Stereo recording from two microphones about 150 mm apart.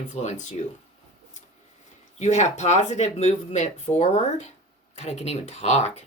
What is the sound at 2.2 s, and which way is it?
Speech, 50° left (ahead or behind).